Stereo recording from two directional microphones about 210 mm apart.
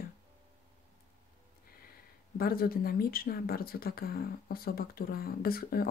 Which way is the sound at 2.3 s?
45° left (ahead or behind).